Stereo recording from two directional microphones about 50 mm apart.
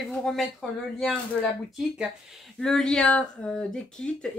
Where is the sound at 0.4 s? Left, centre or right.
Centre.